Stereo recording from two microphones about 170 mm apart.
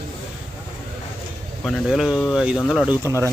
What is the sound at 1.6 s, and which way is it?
Speech, centre (ahead or behind).